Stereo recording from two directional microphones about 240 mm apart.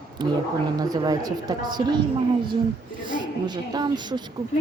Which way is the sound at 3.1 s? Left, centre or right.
Centre.